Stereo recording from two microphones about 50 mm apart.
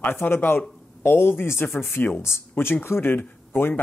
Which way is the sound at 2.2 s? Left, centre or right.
Left.